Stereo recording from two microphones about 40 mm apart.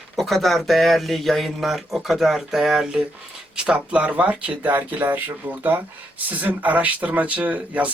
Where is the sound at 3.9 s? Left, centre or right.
Right.